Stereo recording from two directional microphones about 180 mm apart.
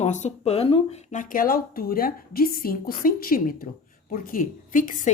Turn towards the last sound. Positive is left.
turn(degrees=45)  # may be behind; listen again after turning